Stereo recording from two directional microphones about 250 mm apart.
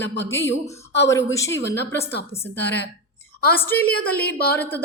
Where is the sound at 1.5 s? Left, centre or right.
Left.